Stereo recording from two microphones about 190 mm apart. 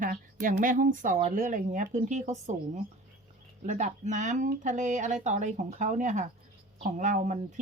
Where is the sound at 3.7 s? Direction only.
40° right (ahead or behind).